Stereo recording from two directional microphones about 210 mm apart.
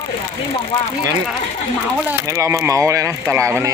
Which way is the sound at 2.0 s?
15° right (ahead or behind).